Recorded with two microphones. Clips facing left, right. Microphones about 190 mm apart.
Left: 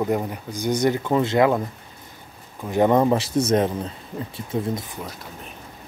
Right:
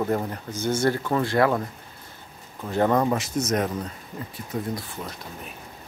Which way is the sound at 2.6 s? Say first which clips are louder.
Left 4 dB; 15° left (ahead or behind).